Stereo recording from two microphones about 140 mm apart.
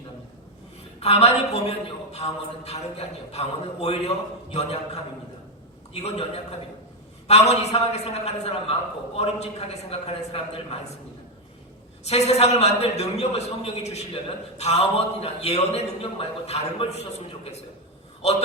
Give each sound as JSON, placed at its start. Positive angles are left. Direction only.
{"t": 0.9, "sound": "a man's voice", "side_deg": 50}
{"t": 5.9, "sound": "a man's voice", "side_deg": 45}
{"t": 12.0, "sound": "a man's voice", "side_deg": 50}